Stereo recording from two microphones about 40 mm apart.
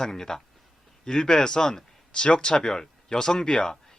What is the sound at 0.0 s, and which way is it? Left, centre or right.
Speech, centre.